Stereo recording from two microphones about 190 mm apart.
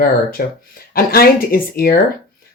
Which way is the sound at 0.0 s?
50° left (ahead or behind).